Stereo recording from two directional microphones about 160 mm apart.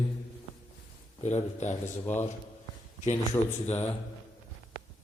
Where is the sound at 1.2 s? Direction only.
45° left (ahead or behind).